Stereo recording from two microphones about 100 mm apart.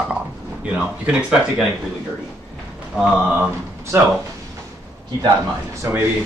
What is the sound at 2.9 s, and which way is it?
Speech, 10° right (ahead or behind).